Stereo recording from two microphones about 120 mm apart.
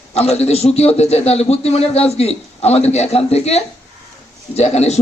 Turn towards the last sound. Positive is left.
turn(degrees=65)  # may be behind; listen again after turning